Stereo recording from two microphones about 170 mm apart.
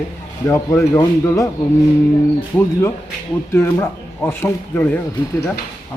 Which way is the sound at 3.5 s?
15° left (ahead or behind).